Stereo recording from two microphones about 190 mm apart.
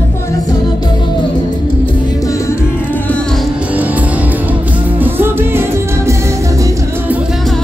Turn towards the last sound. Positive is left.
turn(degrees=0)  # may be behind; listen again after turning